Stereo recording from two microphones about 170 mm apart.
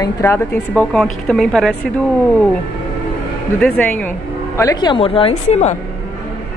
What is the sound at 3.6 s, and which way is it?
Speech, 5° left (ahead or behind).